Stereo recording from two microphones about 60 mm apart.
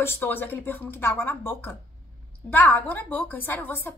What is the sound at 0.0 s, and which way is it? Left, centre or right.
A woman's voice, left.